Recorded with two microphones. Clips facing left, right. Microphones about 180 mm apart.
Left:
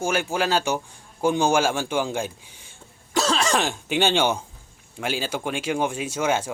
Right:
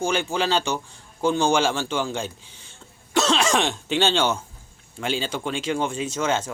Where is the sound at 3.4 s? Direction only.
Centre (ahead or behind).